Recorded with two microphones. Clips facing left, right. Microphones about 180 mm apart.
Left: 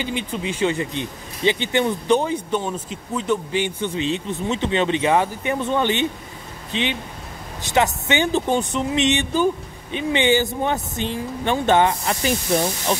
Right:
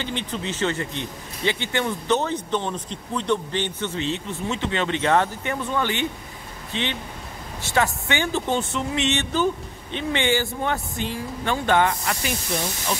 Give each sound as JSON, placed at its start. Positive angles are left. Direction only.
{"t": 0.0, "sound": "speech", "side_deg": 10}